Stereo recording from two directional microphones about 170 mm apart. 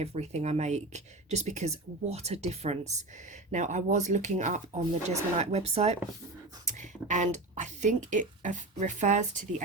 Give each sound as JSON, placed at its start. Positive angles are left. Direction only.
{"t": 0.0, "sound": "speech", "side_deg": -40}
{"t": 7.1, "sound": "speech", "side_deg": -45}